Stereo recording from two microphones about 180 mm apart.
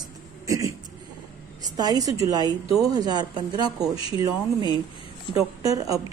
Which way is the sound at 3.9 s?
30° left (ahead or behind).